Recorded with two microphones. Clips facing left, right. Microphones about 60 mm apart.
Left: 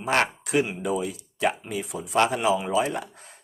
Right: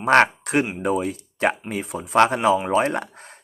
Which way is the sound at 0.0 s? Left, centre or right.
Right.